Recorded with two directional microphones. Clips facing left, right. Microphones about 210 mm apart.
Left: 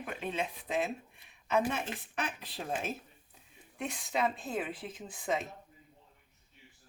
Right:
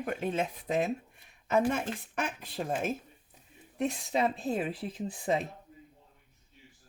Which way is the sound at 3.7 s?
35° right (ahead or behind).